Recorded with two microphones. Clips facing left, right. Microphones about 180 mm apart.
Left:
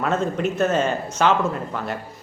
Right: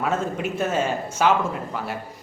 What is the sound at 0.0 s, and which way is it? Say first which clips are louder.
Speech: left 3 dB; 5° right (ahead or behind).